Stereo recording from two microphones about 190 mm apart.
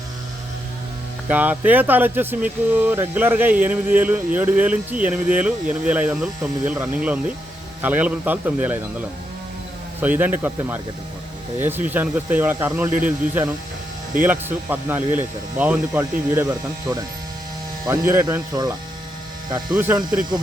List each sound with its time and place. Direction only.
1.3 s speech: 10° right (ahead or behind)
10.0 s speech: 10° right (ahead or behind)
18.1 s speech: 15° right (ahead or behind)
19.7 s speech: 10° right (ahead or behind)